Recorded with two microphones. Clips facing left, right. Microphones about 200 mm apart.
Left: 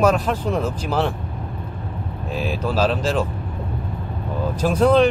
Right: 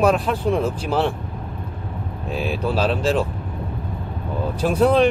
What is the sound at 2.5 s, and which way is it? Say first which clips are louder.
Vehicle: left 1 dB; 35° right (ahead or behind).